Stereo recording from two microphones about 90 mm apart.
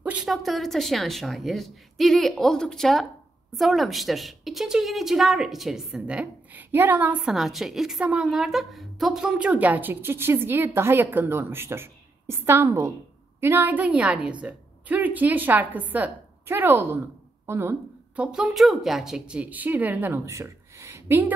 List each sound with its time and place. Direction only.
0.0 s a sound: 15° right (ahead or behind)
0.3 s a woman's voice: centre (ahead or behind); by 7.2 s 15° right (ahead or behind)
7.2 s a woman's voice: centre (ahead or behind)
8.0 s speech: 15° right (ahead or behind)
8.3 s a woman's voice: centre (ahead or behind); by 17.7 s 25° right (ahead or behind)
18.1 s speech: 10° right (ahead or behind)
20.2 s a sound: 35° right (ahead or behind)